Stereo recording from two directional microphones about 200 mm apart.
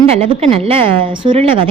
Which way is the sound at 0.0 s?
30° right (ahead or behind).